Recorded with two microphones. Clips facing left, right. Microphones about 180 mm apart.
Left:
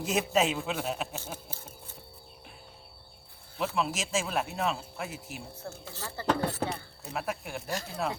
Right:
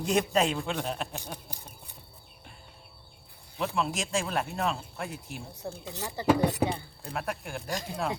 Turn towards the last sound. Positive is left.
turn(degrees=-15)  # may be behind; listen again after turning